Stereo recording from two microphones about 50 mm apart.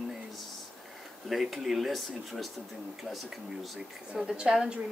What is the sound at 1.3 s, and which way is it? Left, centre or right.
Speech, centre.